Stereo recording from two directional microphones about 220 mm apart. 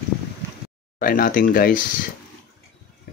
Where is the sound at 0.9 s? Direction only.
40° left (ahead or behind).